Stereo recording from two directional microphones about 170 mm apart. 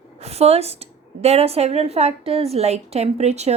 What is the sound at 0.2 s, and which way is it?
A woman's voice, 40° right (ahead or behind).